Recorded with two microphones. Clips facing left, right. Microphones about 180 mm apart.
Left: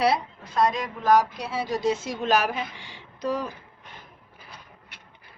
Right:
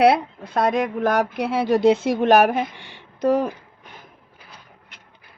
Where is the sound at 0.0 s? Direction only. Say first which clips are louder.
Right 7 dB; 60° right (ahead or behind).